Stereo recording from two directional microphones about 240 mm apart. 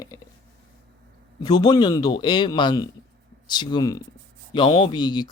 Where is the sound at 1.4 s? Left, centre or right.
Centre.